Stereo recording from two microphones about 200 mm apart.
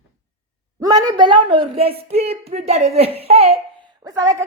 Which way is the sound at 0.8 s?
20° right (ahead or behind).